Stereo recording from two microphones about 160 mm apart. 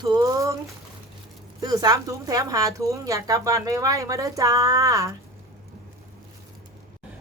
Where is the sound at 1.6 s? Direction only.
25° right (ahead or behind).